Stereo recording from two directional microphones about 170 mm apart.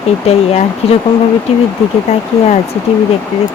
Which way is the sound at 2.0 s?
40° left (ahead or behind).